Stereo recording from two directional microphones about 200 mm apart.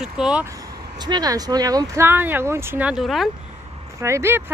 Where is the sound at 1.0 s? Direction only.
20° right (ahead or behind); by 3.3 s centre (ahead or behind).